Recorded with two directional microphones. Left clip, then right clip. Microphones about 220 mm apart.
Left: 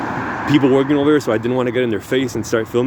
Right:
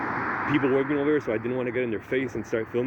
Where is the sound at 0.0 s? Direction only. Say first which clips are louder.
Left 5 dB; 45° left (ahead or behind).